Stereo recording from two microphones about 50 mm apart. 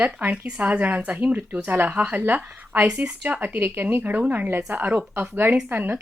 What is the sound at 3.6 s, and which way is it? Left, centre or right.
Speech, right.